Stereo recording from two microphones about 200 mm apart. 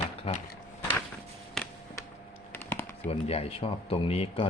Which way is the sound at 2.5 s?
10° left (ahead or behind).